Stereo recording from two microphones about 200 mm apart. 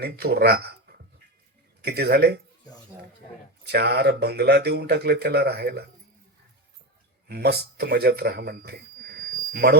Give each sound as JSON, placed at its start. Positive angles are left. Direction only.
{"t": 0.0, "sound": "speech", "side_deg": -50}
{"t": 3.7, "sound": "speech", "side_deg": -50}
{"t": 7.3, "sound": "a man's voice", "side_deg": -50}